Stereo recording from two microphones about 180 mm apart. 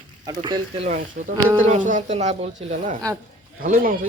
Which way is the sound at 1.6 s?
40° right (ahead or behind).